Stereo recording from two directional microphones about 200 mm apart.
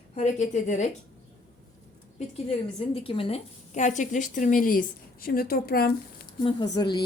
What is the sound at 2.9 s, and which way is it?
A woman's voice, 25° left (ahead or behind).